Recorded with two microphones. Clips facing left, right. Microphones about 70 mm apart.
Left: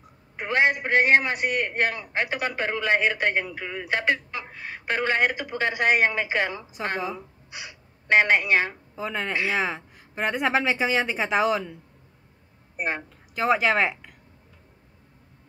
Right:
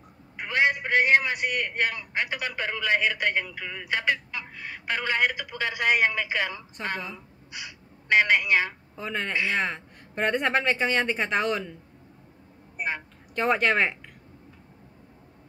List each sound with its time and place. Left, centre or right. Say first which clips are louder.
0.4 s a man's voice: left 2 dB; left
4.8 s speech: left 3 dB; left
8.9 s a woman's voice: left 1 dB; centre
13.3 s a woman's voice: left 2 dB; centre